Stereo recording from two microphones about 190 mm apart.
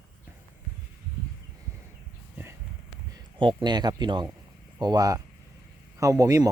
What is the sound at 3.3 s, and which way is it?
Speech, 25° right (ahead or behind).